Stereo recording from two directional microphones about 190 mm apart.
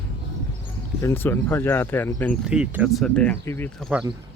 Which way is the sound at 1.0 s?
10° left (ahead or behind).